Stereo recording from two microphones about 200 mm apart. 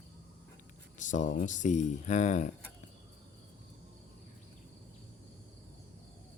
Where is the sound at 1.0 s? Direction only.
40° left (ahead or behind).